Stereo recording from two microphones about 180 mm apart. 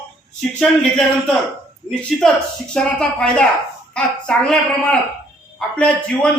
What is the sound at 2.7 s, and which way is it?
A man's voice, 5° left (ahead or behind).